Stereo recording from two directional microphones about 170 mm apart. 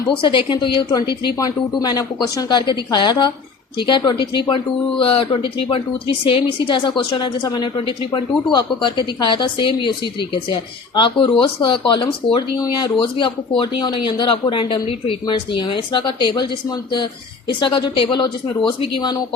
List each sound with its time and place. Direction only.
0.1 s speech: 30° left (ahead or behind)